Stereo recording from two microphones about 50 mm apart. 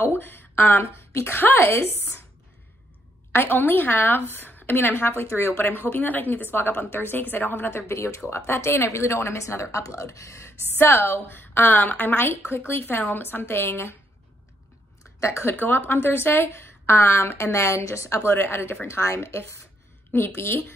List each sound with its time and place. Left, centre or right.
0.0 s a woman's voice: left
3.3 s a woman's voice: left
5.6 s a woman's voice: left
7.7 s speech: left
10.8 s a woman's voice: left
11.9 s speech: left
12.2 s a woman's voice: left
15.1 s speech: left
15.5 s a woman's voice: left
17.4 s speech: left
18.3 s a woman's voice: left
18.9 s speech: left
20.3 s a woman's voice: left